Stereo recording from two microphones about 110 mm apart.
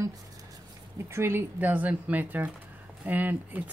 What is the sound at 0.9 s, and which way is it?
Speech, 25° right (ahead or behind).